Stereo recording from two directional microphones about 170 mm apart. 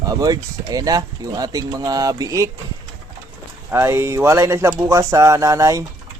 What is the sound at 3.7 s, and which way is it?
Speech, 15° right (ahead or behind).